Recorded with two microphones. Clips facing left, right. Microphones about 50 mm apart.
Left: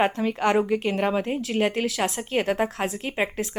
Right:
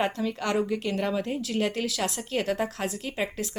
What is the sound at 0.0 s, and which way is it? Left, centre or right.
A woman's voice, left.